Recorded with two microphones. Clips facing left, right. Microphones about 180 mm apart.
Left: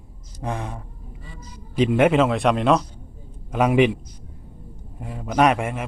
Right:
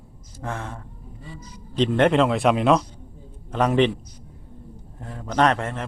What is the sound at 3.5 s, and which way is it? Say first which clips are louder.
Speech: left 2 dB; 10° left (ahead or behind).